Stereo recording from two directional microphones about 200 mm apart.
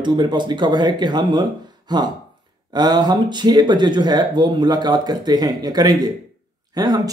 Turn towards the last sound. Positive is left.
turn(degrees=-20)  # may be behind; listen again after turning